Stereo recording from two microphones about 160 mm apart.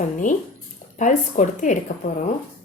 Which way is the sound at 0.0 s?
50° left (ahead or behind).